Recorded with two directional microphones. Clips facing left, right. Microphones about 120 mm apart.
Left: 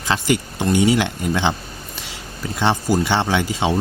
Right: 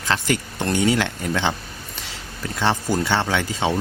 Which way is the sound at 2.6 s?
15° left (ahead or behind).